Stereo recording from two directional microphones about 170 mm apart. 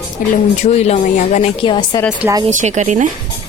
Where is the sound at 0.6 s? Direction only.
40° left (ahead or behind).